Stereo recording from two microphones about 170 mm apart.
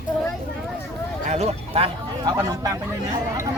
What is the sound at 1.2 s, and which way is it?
Speech, 40° right (ahead or behind).